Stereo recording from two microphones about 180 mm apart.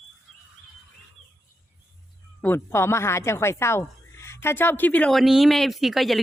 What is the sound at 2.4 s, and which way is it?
Speech, 10° left (ahead or behind).